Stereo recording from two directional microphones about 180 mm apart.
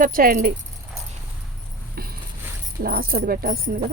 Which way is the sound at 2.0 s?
55° right (ahead or behind).